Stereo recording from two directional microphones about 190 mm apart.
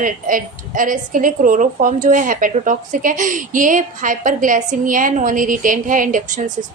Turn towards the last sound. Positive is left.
turn(degrees=-45)  # may be behind; listen again after turning